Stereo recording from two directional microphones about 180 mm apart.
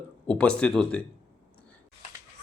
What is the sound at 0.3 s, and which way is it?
Speech, 5° left (ahead or behind).